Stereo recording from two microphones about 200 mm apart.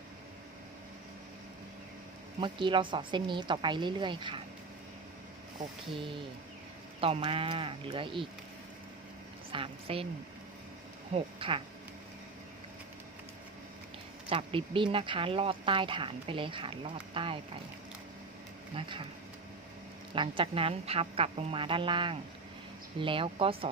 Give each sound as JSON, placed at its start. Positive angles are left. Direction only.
{"t": 2.4, "sound": "speech", "side_deg": -25}
{"t": 7.0, "sound": "speech", "side_deg": -30}
{"t": 9.5, "sound": "speech", "side_deg": -25}
{"t": 11.1, "sound": "speech", "side_deg": -25}
{"t": 14.3, "sound": "speech", "side_deg": -25}
{"t": 18.7, "sound": "speech", "side_deg": -25}
{"t": 20.1, "sound": "speech", "side_deg": -25}